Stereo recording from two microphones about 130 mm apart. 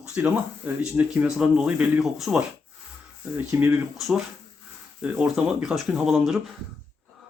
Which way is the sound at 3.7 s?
Centre (ahead or behind).